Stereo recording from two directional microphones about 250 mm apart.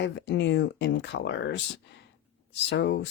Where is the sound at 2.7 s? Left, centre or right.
Left.